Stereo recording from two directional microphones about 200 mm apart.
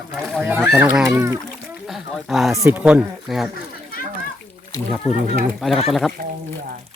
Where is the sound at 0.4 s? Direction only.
10° right (ahead or behind).